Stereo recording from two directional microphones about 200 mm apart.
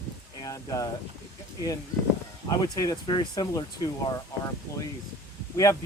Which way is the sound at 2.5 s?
15° left (ahead or behind).